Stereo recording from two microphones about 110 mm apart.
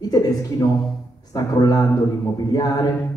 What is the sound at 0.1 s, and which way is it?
A man's voice, 35° left (ahead or behind).